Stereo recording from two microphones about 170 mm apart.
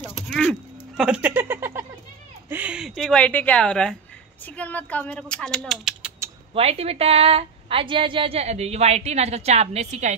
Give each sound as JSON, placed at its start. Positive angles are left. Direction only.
{"t": 0.3, "sound": "a sound", "side_deg": 5}
{"t": 2.5, "sound": "speech", "side_deg": -5}
{"t": 6.5, "sound": "a woman's voice", "side_deg": -35}